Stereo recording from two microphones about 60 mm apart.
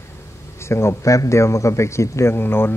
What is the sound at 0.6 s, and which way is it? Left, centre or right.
A man's voice, left.